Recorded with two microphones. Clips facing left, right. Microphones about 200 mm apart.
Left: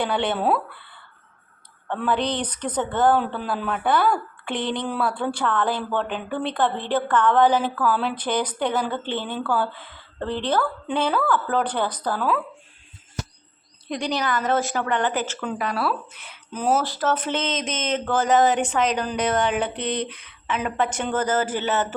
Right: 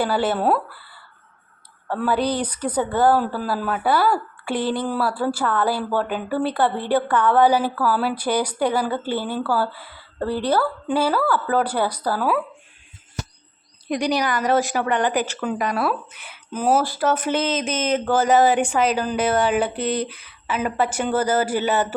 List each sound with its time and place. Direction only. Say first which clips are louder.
0.0 s speech: right 2 dB; 5° right (ahead or behind)
13.8 s speech: right 4 dB; 15° right (ahead or behind)